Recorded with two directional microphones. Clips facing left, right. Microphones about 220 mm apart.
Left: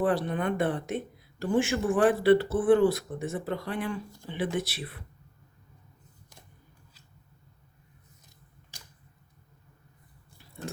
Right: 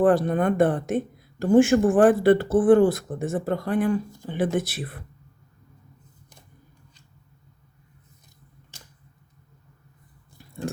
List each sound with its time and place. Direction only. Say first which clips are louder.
0.0 s speech: right 7 dB; 50° right (ahead or behind)